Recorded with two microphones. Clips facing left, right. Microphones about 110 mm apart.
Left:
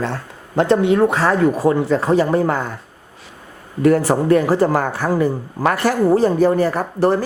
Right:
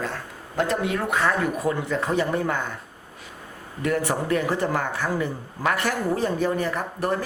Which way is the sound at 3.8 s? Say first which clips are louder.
Left 10 dB; 35° left (ahead or behind).